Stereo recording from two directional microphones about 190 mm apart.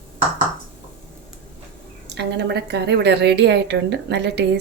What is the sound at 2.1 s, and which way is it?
A woman's voice, 60° right (ahead or behind).